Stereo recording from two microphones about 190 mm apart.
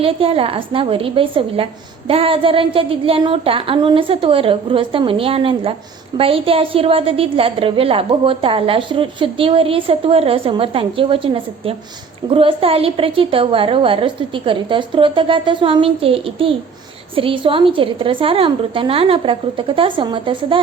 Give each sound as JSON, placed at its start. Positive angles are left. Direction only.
{"t": 0.0, "sound": "a woman's voice", "side_deg": -30}